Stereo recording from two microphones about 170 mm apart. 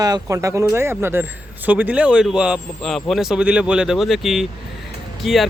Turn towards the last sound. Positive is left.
turn(degrees=0)  # may be behind; listen again after turning